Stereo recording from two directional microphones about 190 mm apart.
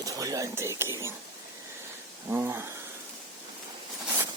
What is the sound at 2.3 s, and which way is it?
Speech, 10° right (ahead or behind).